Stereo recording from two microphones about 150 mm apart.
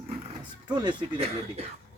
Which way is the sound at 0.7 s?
30° right (ahead or behind).